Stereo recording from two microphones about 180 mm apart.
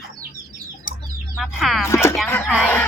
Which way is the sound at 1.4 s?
Centre (ahead or behind).